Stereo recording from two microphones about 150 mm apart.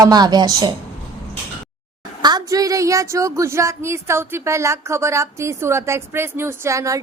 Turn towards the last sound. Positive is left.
turn(degrees=-20)  # may be behind; listen again after turning